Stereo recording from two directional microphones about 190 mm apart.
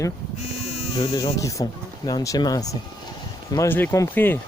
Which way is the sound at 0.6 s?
35° left (ahead or behind).